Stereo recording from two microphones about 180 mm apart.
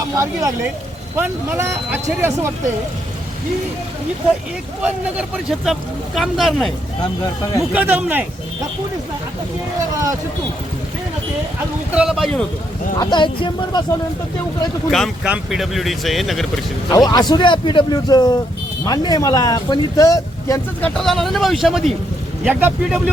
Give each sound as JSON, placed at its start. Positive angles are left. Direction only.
{"t": 1.1, "sound": "speech", "side_deg": -10}
{"t": 4.8, "sound": "speech", "side_deg": -5}
{"t": 9.9, "sound": "speech", "side_deg": -20}
{"t": 11.9, "sound": "speech", "side_deg": 0}
{"t": 13.0, "sound": "speech", "side_deg": 25}
{"t": 14.8, "sound": "speech", "side_deg": 0}
{"t": 16.9, "sound": "speech", "side_deg": 20}
{"t": 21.0, "sound": "speech", "side_deg": 0}